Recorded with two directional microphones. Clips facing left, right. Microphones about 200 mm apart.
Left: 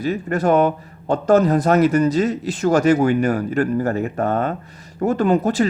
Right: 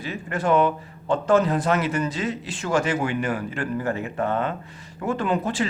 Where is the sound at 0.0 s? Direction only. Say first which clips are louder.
Left 7 dB; 40° left (ahead or behind).